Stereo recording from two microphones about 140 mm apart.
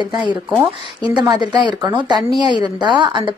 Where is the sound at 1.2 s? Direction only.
30° right (ahead or behind).